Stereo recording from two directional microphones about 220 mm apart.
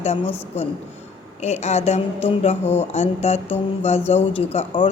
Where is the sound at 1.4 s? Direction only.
30° left (ahead or behind).